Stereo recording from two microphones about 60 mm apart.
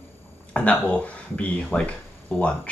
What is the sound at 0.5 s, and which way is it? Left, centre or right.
Speech, left.